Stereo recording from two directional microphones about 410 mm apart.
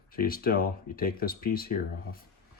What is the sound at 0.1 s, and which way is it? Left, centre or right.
Speech, left.